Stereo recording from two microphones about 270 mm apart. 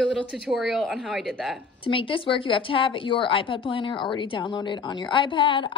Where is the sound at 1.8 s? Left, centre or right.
Centre.